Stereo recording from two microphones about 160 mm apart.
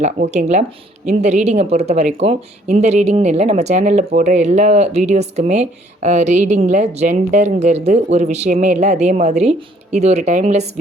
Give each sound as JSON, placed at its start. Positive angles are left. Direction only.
{"t": 0.3, "sound": "speech", "side_deg": -45}